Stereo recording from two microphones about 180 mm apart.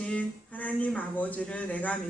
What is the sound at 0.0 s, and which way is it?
Speech, 10° left (ahead or behind).